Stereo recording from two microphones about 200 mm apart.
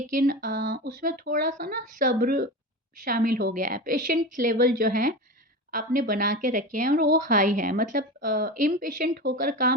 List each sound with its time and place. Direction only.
0.1 s a woman's voice: 45° right (ahead or behind)